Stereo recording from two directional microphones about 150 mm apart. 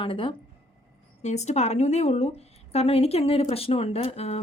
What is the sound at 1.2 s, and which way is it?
A woman's voice, 50° left (ahead or behind).